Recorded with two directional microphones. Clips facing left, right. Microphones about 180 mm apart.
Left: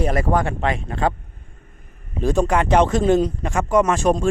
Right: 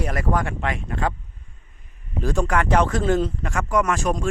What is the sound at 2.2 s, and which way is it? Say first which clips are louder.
Speech: left 4 dB; 20° left (ahead or behind).